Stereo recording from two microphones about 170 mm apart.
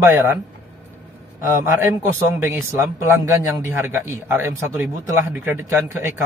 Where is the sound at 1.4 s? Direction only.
15° right (ahead or behind).